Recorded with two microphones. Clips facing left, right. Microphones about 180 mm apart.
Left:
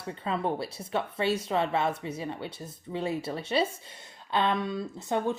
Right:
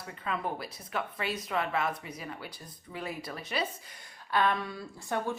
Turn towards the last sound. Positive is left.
turn(degrees=20)  # may be behind; listen again after turning